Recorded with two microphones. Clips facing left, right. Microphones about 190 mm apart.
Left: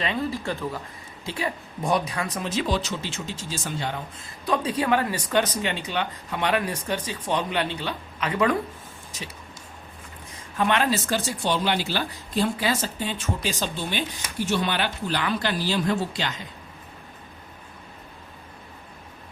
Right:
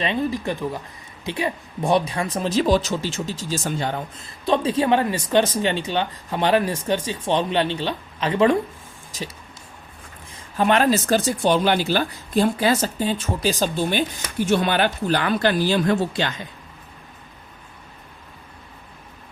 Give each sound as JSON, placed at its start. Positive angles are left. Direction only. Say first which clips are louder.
{"t": 0.0, "sound": "speech", "louder": "right 4 dB", "side_deg": -20}
{"t": 4.4, "sound": "speech", "louder": "right 4 dB", "side_deg": -30}
{"t": 10.6, "sound": "speech", "louder": "right 5 dB", "side_deg": -40}